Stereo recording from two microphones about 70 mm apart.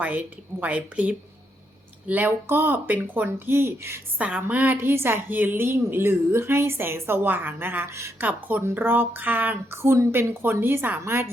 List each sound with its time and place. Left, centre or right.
0.0 s a woman's voice: right
4.2 s a woman's voice: right
8.2 s a woman's voice: right